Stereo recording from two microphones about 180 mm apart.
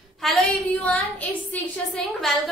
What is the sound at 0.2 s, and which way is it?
A woman's voice, centre (ahead or behind).